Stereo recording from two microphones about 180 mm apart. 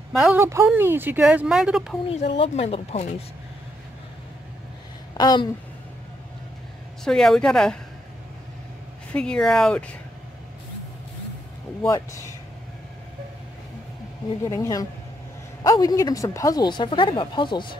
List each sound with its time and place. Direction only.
0.1 s speech: centre (ahead or behind)
0.4 s speech: 15° right (ahead or behind)
2.0 s speech: 30° left (ahead or behind)
5.1 s speech: 25° left (ahead or behind)
7.1 s speech: 5° left (ahead or behind)
9.1 s speech: 5° left (ahead or behind)
14.5 s speech: 20° left (ahead or behind)